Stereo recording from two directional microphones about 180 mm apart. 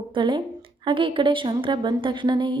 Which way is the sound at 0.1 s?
25° right (ahead or behind).